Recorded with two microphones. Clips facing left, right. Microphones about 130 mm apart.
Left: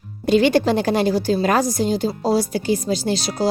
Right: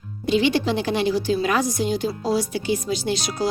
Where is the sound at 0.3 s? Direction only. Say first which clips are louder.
Left 4 dB; 45° left (ahead or behind).